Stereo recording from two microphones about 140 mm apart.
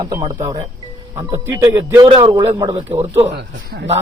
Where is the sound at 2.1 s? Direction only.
35° right (ahead or behind).